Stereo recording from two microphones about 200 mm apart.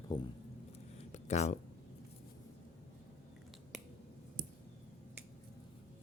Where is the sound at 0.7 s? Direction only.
35° left (ahead or behind).